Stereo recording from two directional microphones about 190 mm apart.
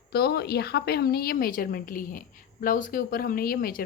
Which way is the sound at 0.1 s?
55° left (ahead or behind).